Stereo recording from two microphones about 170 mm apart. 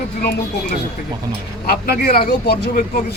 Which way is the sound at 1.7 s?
65° left (ahead or behind).